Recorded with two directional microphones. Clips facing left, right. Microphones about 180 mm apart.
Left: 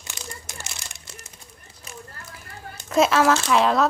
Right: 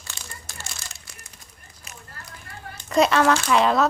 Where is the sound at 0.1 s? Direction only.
20° left (ahead or behind).